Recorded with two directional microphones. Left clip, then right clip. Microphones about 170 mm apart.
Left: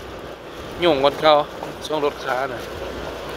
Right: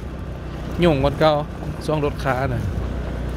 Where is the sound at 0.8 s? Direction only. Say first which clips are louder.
Left 2 dB; 5° left (ahead or behind).